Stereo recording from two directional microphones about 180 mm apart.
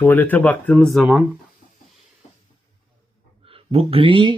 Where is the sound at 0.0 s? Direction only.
10° left (ahead or behind).